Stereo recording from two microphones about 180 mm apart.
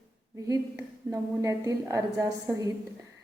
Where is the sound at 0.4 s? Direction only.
20° right (ahead or behind).